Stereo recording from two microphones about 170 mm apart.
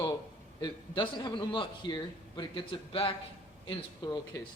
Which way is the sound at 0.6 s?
25° left (ahead or behind).